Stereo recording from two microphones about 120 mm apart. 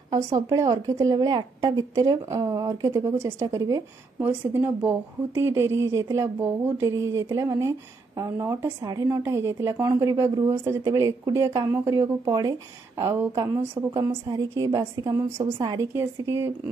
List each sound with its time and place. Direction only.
0.5 s a woman's voice: 35° right (ahead or behind)
4.2 s a woman's voice: 15° right (ahead or behind)